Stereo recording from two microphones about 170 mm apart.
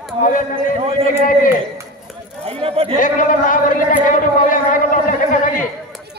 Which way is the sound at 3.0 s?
50° left (ahead or behind).